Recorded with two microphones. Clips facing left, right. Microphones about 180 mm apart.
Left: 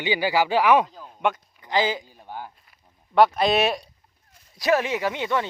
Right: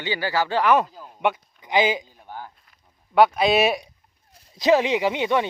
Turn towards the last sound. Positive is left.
turn(degrees=-20)  # may be behind; listen again after turning